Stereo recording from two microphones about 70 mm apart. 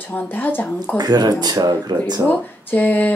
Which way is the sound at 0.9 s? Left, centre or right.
Right.